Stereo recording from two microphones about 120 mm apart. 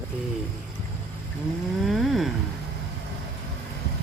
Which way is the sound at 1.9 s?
Centre (ahead or behind).